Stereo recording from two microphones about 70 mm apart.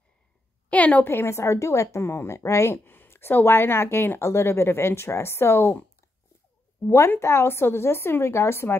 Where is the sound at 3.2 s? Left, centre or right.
Left.